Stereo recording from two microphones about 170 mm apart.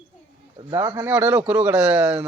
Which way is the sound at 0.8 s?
15° right (ahead or behind).